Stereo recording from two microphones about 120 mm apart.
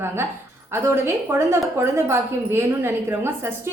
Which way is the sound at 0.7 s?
20° right (ahead or behind).